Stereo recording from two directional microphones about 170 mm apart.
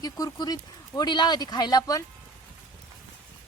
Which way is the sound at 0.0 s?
20° left (ahead or behind).